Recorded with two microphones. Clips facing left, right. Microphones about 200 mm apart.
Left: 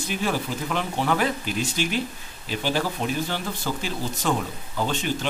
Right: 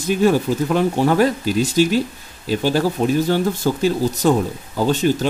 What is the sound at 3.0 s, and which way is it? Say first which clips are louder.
Speech: right 10 dB; 40° right (ahead or behind).